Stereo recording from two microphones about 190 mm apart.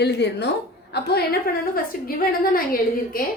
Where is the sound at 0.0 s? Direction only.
60° left (ahead or behind).